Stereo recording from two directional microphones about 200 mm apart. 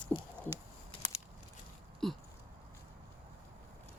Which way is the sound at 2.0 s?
Centre (ahead or behind).